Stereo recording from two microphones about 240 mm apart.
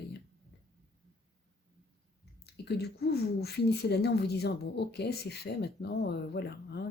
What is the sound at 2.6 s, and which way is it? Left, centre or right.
A woman's voice, left.